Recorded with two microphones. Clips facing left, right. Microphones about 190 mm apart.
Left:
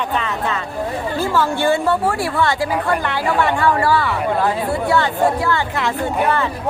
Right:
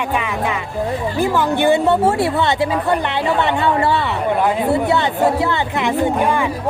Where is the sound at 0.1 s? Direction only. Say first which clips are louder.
Right 1 dB; 10° right (ahead or behind).